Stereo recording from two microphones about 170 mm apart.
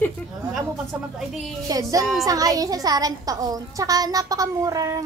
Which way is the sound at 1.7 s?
20° right (ahead or behind).